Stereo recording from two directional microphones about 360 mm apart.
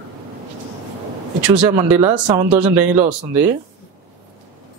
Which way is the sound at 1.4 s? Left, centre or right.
Centre.